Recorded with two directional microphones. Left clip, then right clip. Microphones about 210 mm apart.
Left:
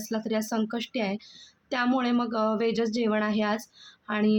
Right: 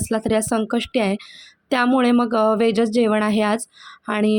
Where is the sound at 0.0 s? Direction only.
35° right (ahead or behind).